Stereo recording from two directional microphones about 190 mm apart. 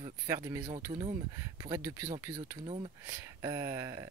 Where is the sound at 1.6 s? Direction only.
15° right (ahead or behind).